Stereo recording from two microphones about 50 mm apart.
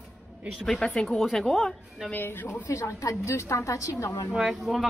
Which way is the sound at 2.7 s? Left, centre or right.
Left.